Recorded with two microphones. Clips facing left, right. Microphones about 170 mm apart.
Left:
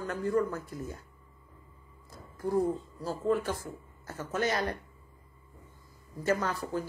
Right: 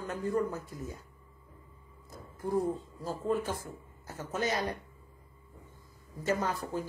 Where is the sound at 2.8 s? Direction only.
20° right (ahead or behind).